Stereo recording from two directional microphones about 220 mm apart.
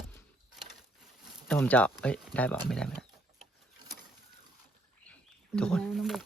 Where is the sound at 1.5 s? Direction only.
5° left (ahead or behind).